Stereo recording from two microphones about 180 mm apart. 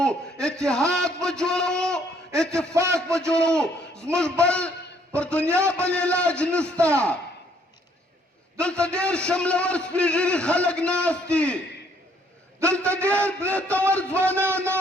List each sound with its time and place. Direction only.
0.0 s a man's voice: 5° left (ahead or behind)
2.7 s a man's voice: 15° right (ahead or behind)
3.3 s a man's voice: 5° left (ahead or behind)
8.5 s a man's voice: 5° left (ahead or behind)
12.6 s a man's voice: 5° left (ahead or behind)
13.1 s a man's voice: 15° right (ahead or behind)
13.5 s a man's voice: 5° left (ahead or behind)
14.3 s a man's voice: 15° right (ahead or behind)